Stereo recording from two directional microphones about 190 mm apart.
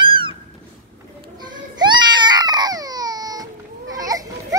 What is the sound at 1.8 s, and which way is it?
Baby cry, 25° right (ahead or behind).